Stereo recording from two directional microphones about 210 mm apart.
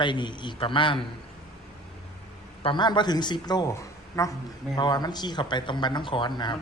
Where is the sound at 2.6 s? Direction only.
20° left (ahead or behind).